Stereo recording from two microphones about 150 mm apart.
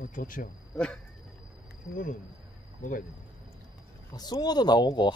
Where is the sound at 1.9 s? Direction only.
65° left (ahead or behind).